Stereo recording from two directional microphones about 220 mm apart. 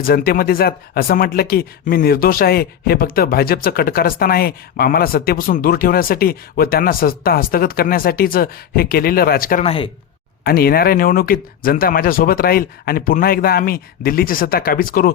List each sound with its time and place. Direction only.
0.0 s speech: 45° left (ahead or behind)
9.6 s speech: 25° left (ahead or behind)
10.4 s speech: 45° left (ahead or behind)